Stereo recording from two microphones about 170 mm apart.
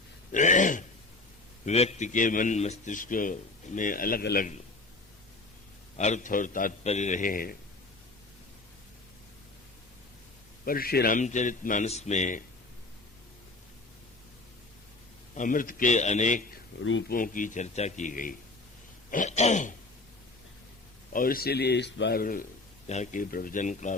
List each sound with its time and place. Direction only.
0.3 s a man's voice: 45° left (ahead or behind); by 4.4 s 65° left (ahead or behind)
6.0 s a man's voice: 45° left (ahead or behind)
6.8 s a man's voice: 40° left (ahead or behind)
10.7 s a man's voice: 60° left (ahead or behind); by 12.4 s 45° left (ahead or behind)
15.4 s a man's voice: 50° left (ahead or behind)
16.9 s speech: 90° left
17.2 s a man's voice: 50° left (ahead or behind)
21.1 s speech: 55° left (ahead or behind)
22.9 s a man's voice: 45° left (ahead or behind)
23.3 s a man's voice: 55° left (ahead or behind)